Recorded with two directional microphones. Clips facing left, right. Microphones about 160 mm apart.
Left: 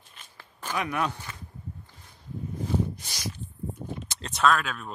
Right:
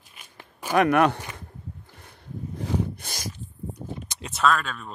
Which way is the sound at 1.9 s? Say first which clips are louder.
Right 2 dB; 65° right (ahead or behind).